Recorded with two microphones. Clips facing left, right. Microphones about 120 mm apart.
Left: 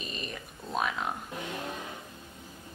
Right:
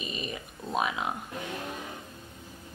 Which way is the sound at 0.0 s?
5° right (ahead or behind).